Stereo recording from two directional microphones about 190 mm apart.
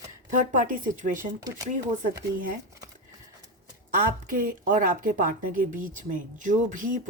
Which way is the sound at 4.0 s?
45° right (ahead or behind).